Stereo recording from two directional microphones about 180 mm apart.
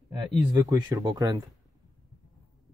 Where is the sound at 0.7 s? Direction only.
20° right (ahead or behind).